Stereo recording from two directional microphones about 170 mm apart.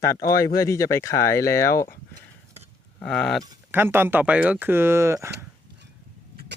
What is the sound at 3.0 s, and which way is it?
Speech, 5° left (ahead or behind).